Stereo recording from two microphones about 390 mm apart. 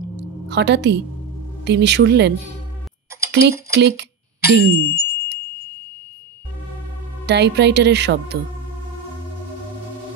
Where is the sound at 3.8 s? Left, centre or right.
Right.